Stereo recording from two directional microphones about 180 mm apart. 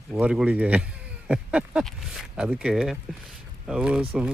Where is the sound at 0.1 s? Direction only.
5° right (ahead or behind).